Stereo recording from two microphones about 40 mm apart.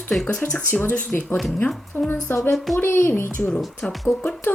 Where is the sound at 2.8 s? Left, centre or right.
Left.